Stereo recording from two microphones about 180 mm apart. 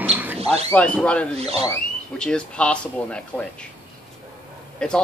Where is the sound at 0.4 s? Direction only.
35° right (ahead or behind).